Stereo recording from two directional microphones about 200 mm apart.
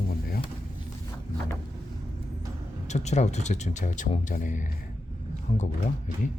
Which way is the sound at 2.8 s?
35° left (ahead or behind).